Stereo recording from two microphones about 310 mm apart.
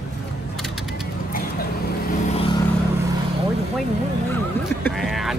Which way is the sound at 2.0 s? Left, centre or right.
Centre.